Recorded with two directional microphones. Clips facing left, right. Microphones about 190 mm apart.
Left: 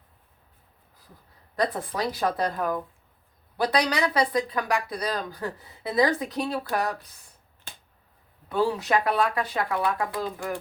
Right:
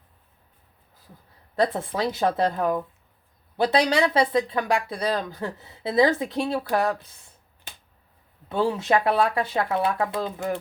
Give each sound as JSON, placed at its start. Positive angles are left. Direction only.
{"t": 1.5, "sound": "speech", "side_deg": -25}
{"t": 8.4, "sound": "speech", "side_deg": -25}